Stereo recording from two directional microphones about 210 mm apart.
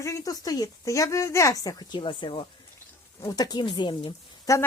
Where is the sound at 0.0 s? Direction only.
15° left (ahead or behind).